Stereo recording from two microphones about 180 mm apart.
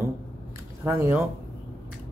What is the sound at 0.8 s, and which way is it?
Speech, 15° right (ahead or behind).